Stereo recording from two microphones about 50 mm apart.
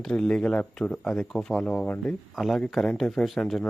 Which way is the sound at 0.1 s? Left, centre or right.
Centre.